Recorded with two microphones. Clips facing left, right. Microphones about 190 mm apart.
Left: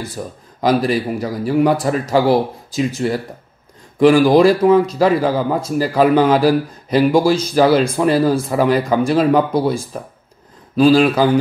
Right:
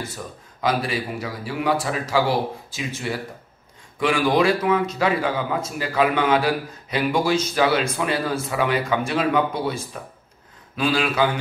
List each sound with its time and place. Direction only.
0.2 s speech: 35° left (ahead or behind)
10.8 s speech: 35° left (ahead or behind)